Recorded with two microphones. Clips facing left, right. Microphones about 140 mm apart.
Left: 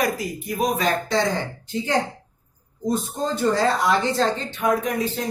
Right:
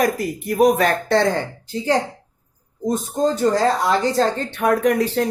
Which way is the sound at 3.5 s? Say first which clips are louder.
Right 2 dB; 40° right (ahead or behind).